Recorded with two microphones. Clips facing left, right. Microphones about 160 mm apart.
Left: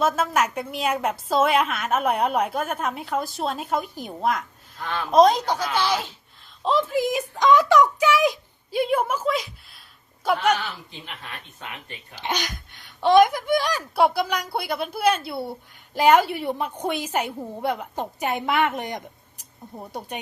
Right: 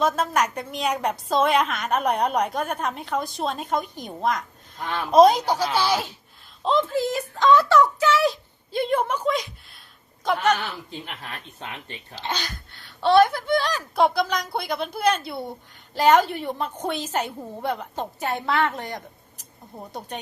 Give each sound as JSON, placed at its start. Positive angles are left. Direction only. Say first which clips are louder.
{"t": 0.0, "sound": "a woman's voice", "louder": "even", "side_deg": 5}
{"t": 6.7, "sound": "a woman's voice", "louder": "even", "side_deg": 10}
{"t": 11.0, "sound": "speech", "louder": "right 2 dB", "side_deg": -40}
{"t": 12.1, "sound": "a woman's voice", "louder": "left 2 dB", "side_deg": 15}